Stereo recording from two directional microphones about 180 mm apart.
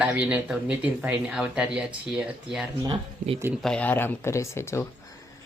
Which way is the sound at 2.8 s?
25° right (ahead or behind).